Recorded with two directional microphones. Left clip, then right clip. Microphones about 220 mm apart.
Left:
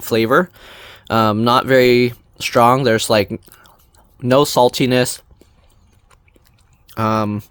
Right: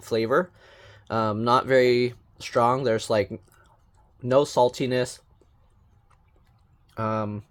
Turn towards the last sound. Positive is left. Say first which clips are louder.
# left 10 dB
turn(degrees=50)  # may be behind; listen again after turning